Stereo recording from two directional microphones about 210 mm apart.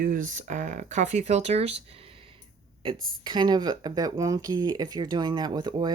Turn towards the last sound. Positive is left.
turn(degrees=-20)  # may be behind; listen again after turning